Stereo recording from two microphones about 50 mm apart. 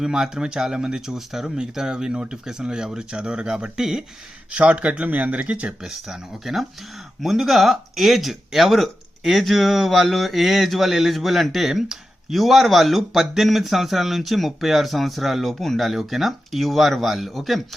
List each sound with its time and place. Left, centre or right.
0.0 s speech: centre
4.5 s speech: right
5.8 s speech: centre